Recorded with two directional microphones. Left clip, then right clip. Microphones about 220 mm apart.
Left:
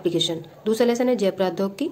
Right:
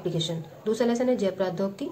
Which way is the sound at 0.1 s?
50° left (ahead or behind).